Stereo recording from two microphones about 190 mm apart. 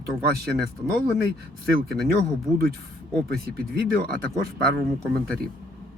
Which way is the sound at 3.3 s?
55° right (ahead or behind).